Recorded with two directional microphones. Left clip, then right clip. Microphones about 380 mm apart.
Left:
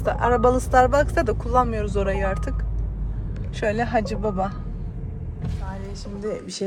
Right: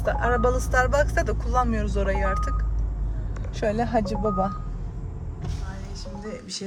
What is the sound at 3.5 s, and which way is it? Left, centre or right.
Speech, left.